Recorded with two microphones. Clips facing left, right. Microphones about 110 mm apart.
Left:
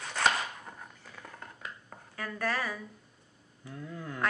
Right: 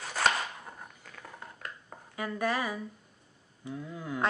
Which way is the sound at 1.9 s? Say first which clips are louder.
Right 5 dB; 15° right (ahead or behind).